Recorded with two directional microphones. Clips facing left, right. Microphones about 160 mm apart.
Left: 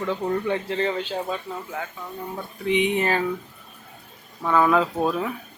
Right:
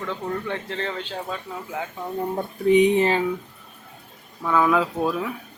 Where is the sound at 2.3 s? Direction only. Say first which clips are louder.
Right 6 dB; 40° right (ahead or behind).